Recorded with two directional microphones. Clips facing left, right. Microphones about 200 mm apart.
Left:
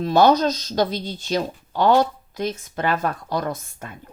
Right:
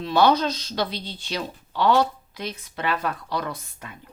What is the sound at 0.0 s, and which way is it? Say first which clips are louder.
Speech: left 3 dB; 45° left (ahead or behind).